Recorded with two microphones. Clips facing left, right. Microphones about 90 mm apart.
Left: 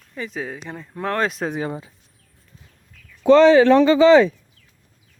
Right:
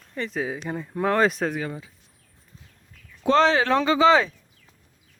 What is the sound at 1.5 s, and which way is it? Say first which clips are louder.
Speech: left 3 dB; 25° left (ahead or behind).